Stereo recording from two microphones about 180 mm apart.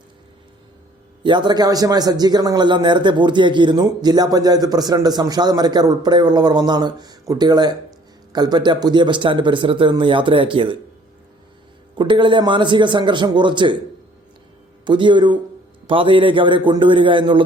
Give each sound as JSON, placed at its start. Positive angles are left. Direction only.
{"t": 1.2, "sound": "a man's voice", "side_deg": -25}
{"t": 11.9, "sound": "a man's voice", "side_deg": -25}
{"t": 14.8, "sound": "a man's voice", "side_deg": -25}